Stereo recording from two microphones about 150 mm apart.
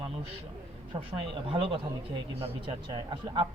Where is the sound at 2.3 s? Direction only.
35° right (ahead or behind).